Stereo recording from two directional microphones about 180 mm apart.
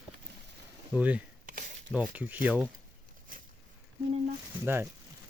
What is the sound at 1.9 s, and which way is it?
Speech, 10° right (ahead or behind).